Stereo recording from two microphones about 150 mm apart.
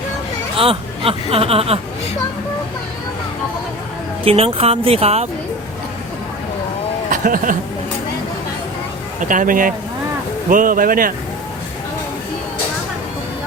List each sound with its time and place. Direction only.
0.5 s speech: 40° right (ahead or behind)
4.2 s speech: 40° right (ahead or behind)
7.1 s speech: 65° right (ahead or behind)
9.2 s speech: 60° right (ahead or behind)